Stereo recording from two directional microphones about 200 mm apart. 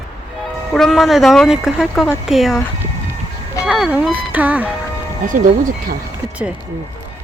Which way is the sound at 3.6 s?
5° right (ahead or behind).